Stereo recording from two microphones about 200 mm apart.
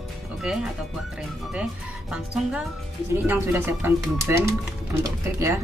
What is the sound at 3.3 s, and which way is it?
Speech, 10° right (ahead or behind).